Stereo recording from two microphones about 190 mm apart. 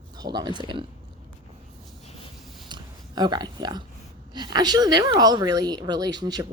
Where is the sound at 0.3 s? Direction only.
25° right (ahead or behind).